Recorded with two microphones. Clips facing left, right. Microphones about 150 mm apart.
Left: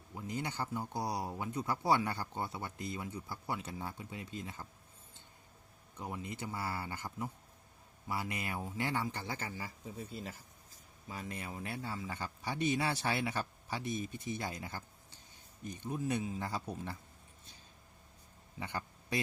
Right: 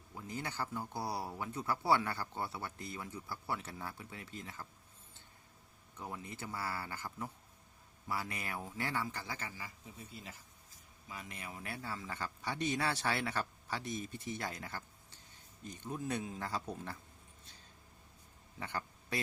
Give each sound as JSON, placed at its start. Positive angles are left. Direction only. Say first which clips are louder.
{"t": 0.1, "sound": "speech", "louder": "left 3 dB", "side_deg": 20}
{"t": 6.0, "sound": "a man's voice", "louder": "left 3 dB", "side_deg": 15}
{"t": 11.1, "sound": "a man's voice", "louder": "left 4 dB", "side_deg": 30}
{"t": 18.6, "sound": "a man's voice", "louder": "even", "side_deg": 15}